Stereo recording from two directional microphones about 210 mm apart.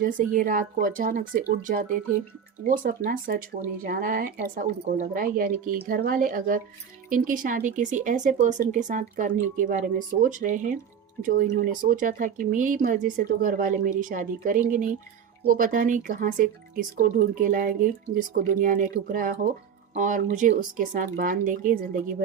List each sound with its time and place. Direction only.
0.3 s speech: 40° right (ahead or behind)